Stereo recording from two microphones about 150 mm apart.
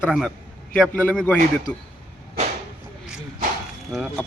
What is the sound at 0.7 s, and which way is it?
Speech, 10° left (ahead or behind).